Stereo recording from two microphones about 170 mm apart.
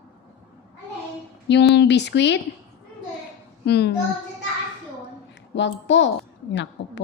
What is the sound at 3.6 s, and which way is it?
Speech, 75° left (ahead or behind).